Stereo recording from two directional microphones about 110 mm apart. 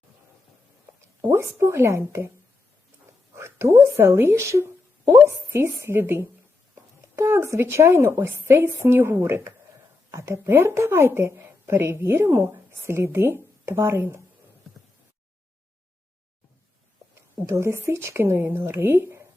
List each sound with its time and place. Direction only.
1.3 s a woman's voice: 25° right (ahead or behind)
3.3 s a woman's voice: 25° right (ahead or behind)
17.4 s a woman's voice: 25° right (ahead or behind)